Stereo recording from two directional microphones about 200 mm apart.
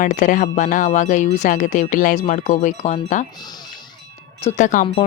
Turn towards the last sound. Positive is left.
turn(degrees=40)  # may be behind; listen again after turning